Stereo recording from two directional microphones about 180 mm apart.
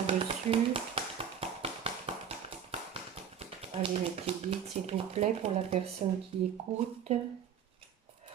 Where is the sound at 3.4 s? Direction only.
30° right (ahead or behind).